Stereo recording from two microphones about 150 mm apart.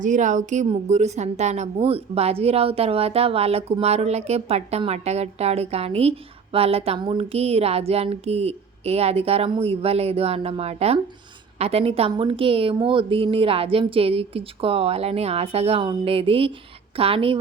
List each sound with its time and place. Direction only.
0.0 s a woman's voice: 55° right (ahead or behind); by 17.3 s 35° right (ahead or behind)